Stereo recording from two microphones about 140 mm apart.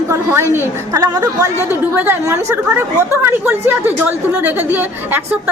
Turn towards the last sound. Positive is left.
turn(degrees=-15)  # may be behind; listen again after turning